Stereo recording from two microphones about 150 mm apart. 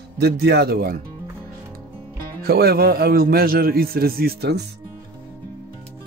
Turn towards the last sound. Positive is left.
turn(degrees=-90)